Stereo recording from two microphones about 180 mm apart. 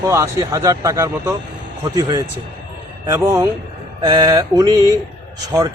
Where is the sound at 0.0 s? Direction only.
15° right (ahead or behind).